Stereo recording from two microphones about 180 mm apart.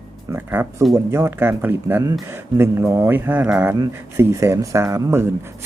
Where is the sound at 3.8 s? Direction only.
15° right (ahead or behind).